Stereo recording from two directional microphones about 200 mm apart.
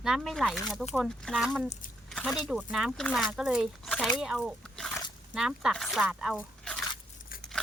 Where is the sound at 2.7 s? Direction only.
5° right (ahead or behind).